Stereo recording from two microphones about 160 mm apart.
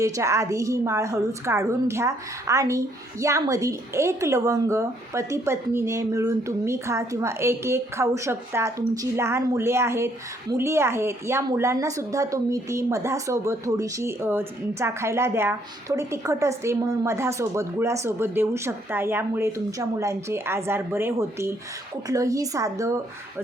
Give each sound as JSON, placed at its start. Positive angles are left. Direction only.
{"t": 0.0, "sound": "a woman's voice", "side_deg": -20}